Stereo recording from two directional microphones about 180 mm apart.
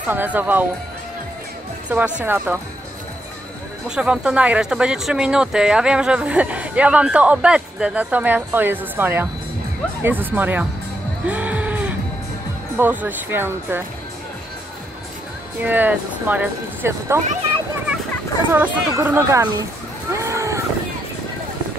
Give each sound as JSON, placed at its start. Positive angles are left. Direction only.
{"t": 0.1, "sound": "speech", "side_deg": -10}
{"t": 1.9, "sound": "speech", "side_deg": -5}
{"t": 3.9, "sound": "speech", "side_deg": -5}
{"t": 11.2, "sound": "music", "side_deg": -10}
{"t": 12.7, "sound": "speech", "side_deg": -10}
{"t": 15.6, "sound": "speech", "side_deg": -10}
{"t": 18.5, "sound": "speech", "side_deg": -10}
{"t": 20.1, "sound": "vehicle", "side_deg": -15}